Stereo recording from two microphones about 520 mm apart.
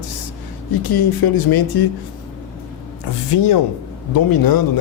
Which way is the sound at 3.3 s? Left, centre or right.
Left.